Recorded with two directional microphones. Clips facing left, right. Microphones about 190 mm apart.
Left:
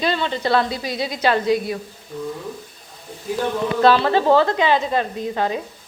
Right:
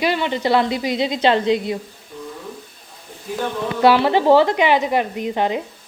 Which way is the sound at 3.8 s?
15° right (ahead or behind).